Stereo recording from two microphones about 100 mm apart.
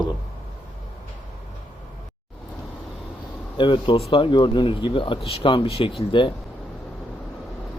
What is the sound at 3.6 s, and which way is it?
Speech, 55° left (ahead or behind).